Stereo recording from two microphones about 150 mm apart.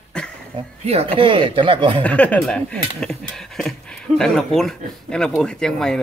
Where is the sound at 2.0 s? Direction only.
10° left (ahead or behind).